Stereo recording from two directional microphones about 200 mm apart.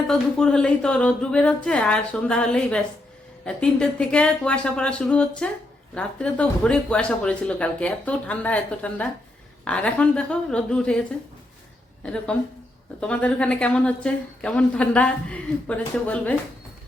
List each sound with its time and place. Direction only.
0.1 s a woman's voice: 5° left (ahead or behind)
13.0 s a woman's voice: 5° left (ahead or behind)